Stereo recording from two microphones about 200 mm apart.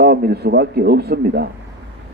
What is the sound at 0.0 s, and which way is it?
A man's voice, 50° right (ahead or behind).